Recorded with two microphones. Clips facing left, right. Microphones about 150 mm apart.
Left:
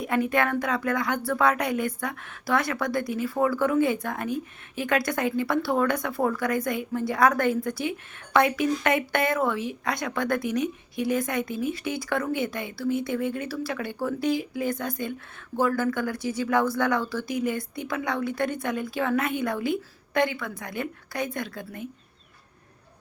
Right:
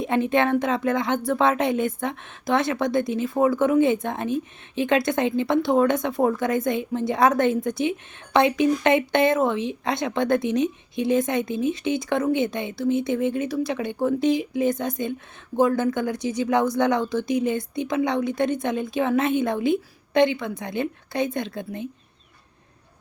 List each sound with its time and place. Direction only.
0.0 s speech: 25° right (ahead or behind)